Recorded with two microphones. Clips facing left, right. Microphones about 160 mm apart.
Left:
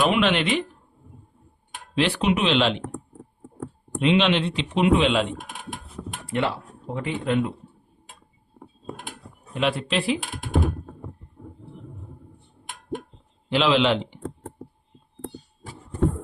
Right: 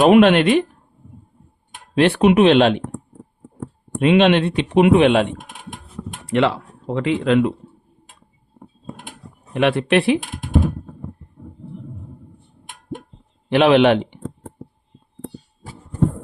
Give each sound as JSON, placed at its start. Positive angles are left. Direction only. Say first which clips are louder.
{"t": 0.0, "sound": "speech", "louder": "right 10 dB", "side_deg": -50}
{"t": 2.0, "sound": "speech", "louder": "right 9 dB", "side_deg": -55}
{"t": 4.0, "sound": "speech", "louder": "right 6 dB", "side_deg": -55}
{"t": 6.3, "sound": "speech", "louder": "right 8 dB", "side_deg": -90}
{"t": 9.5, "sound": "speech", "louder": "right 8 dB", "side_deg": -65}
{"t": 13.5, "sound": "speech", "louder": "right 7 dB", "side_deg": -60}